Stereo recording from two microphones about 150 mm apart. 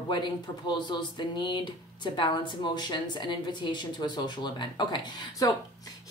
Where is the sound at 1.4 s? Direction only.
30° left (ahead or behind).